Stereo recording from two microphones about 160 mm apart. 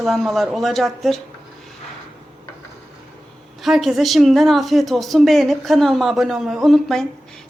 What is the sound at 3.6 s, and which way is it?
A woman's voice, centre (ahead or behind).